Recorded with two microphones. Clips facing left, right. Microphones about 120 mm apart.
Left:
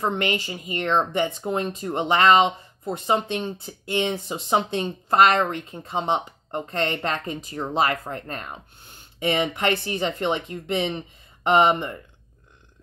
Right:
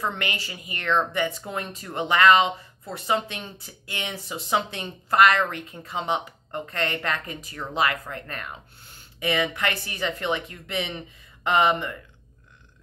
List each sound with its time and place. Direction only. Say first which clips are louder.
0.0 s speech: left 5 dB; 25° left (ahead or behind)
7.7 s speech: left 2 dB; 35° left (ahead or behind)